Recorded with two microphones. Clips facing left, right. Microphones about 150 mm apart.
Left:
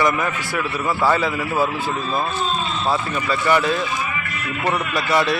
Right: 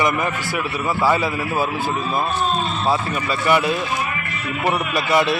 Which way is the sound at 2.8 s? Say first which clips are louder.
Even; 15° right (ahead or behind).